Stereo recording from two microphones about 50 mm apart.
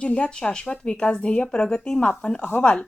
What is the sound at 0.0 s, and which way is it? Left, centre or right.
A woman's voice, left.